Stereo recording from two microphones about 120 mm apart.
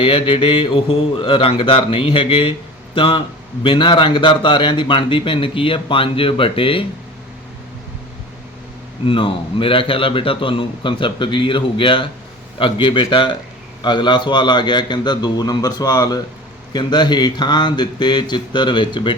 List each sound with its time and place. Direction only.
0.0 s a man's voice: 45° left (ahead or behind)
9.0 s a man's voice: 45° left (ahead or behind)